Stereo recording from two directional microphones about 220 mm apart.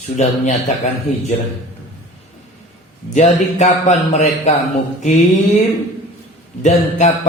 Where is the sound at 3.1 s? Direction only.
30° left (ahead or behind).